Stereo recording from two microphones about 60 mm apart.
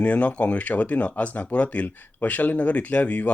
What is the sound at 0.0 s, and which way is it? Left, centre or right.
Speech, left.